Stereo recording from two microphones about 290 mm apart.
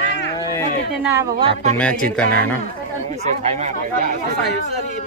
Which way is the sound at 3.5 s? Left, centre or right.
Right.